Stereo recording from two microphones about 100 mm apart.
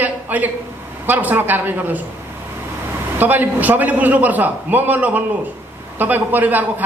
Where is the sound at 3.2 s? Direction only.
15° right (ahead or behind).